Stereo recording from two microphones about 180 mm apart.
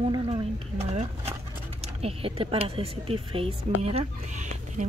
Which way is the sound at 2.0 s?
35° right (ahead or behind).